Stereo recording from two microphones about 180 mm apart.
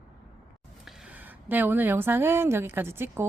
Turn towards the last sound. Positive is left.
turn(degrees=-15)  # may be behind; listen again after turning